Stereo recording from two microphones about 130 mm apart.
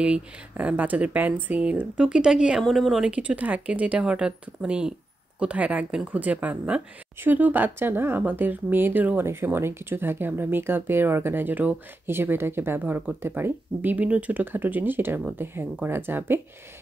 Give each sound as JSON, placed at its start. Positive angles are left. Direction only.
{"t": 0.0, "sound": "speech", "side_deg": -10}